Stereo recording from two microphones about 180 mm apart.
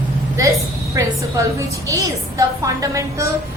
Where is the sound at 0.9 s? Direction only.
15° right (ahead or behind).